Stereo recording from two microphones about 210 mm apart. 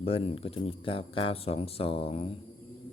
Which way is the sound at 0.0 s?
25° left (ahead or behind).